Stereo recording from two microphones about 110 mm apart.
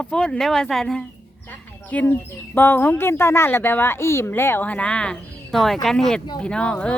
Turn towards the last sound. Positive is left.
turn(degrees=10)  # may be behind; listen again after turning